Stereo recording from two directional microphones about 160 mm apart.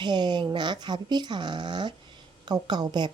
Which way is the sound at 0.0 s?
30° right (ahead or behind).